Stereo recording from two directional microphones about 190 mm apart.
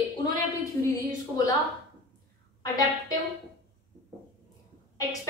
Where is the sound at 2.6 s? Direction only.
20° left (ahead or behind).